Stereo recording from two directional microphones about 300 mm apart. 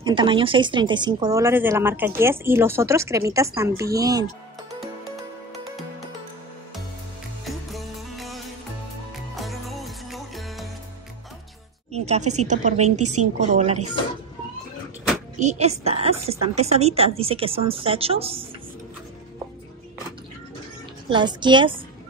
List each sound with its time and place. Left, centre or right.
0.0 s speech: centre
4.7 s music: centre
7.4 s music: centre
11.9 s music: right
12.4 s a woman's voice: right
15.3 s a woman's voice: right
21.1 s speech: centre